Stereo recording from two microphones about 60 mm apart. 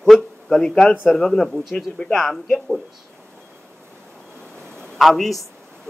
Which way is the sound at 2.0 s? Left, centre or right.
Centre.